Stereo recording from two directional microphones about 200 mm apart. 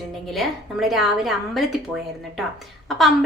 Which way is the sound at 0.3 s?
Centre (ahead or behind).